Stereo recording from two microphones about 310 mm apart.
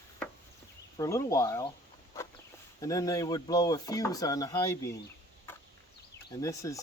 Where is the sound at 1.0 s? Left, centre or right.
Centre.